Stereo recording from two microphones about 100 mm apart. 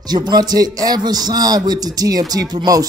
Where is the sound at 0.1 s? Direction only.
45° right (ahead or behind).